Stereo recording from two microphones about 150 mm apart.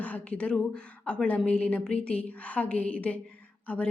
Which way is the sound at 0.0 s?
10° left (ahead or behind).